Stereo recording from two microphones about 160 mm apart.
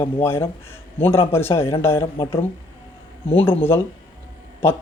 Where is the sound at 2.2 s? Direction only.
35° left (ahead or behind).